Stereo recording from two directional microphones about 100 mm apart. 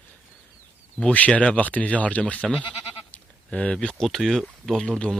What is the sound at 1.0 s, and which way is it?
Speech, 15° left (ahead or behind).